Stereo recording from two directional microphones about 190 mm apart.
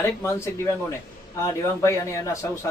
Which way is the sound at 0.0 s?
15° left (ahead or behind).